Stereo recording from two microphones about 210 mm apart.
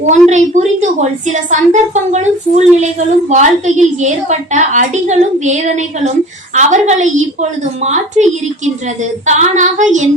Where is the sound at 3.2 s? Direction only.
35° right (ahead or behind).